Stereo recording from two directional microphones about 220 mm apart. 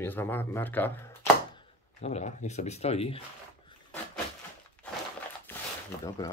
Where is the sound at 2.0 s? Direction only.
30° left (ahead or behind).